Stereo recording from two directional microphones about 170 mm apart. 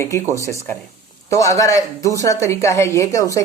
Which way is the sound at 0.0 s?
15° left (ahead or behind).